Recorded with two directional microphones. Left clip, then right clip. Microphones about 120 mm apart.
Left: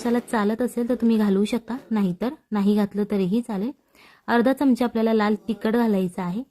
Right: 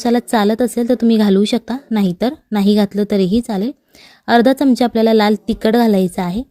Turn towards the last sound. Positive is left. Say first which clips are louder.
# right 9 dB
turn(degrees=-50)  # may be behind; listen again after turning